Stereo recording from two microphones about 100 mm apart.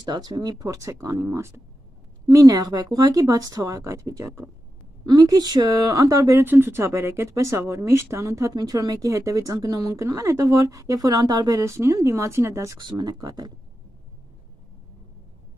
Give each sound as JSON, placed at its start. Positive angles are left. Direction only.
{"t": 0.0, "sound": "speech", "side_deg": -45}
{"t": 6.4, "sound": "speech", "side_deg": -20}
{"t": 12.7, "sound": "speech", "side_deg": -45}